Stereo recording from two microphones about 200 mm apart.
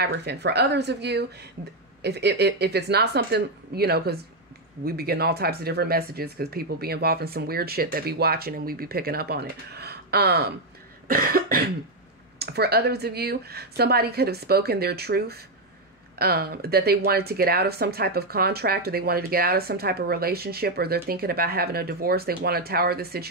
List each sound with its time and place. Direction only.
0.0 s speech: 55° right (ahead or behind)